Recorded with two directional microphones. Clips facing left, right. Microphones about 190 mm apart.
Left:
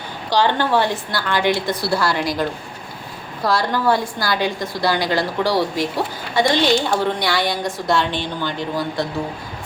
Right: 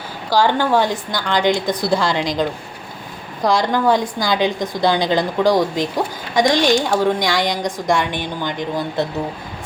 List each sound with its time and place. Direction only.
0.3 s a woman's voice: 10° right (ahead or behind)